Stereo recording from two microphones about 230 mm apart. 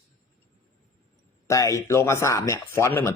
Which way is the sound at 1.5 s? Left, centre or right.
Centre.